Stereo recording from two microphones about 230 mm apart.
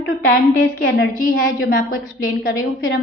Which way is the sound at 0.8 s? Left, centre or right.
Left.